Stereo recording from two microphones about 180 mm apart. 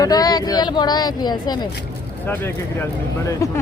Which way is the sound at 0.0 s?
20° left (ahead or behind).